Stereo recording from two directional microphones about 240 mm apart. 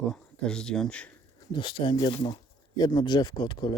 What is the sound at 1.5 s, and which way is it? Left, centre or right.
Speech, centre.